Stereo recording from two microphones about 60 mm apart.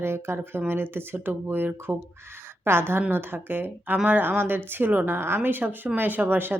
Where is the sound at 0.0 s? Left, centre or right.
Right.